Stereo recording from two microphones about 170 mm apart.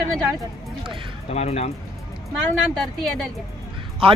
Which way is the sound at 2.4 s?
Centre (ahead or behind).